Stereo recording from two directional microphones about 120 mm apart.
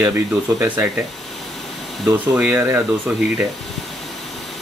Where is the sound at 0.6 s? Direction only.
15° right (ahead or behind).